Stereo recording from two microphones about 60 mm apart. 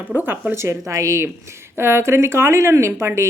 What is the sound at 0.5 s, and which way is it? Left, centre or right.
Speech, right.